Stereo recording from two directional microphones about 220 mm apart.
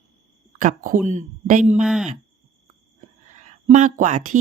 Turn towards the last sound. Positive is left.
turn(degrees=-35)  # may be behind; listen again after turning